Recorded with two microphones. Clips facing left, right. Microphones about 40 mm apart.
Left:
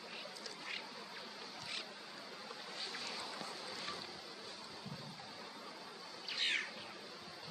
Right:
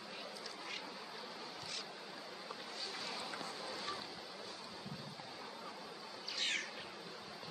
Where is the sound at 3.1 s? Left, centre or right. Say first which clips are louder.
Right 1 dB; centre.